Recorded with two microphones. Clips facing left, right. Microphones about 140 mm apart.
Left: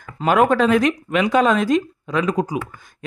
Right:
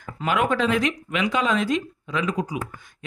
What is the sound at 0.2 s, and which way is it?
Speech, 40° left (ahead or behind).